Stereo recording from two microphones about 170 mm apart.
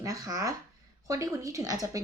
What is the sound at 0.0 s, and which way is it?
Speech, 20° right (ahead or behind).